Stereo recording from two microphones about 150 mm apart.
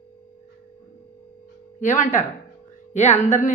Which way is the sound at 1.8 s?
55° left (ahead or behind).